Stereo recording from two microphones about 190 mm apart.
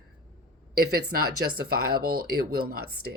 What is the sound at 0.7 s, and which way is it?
Speech, 50° right (ahead or behind).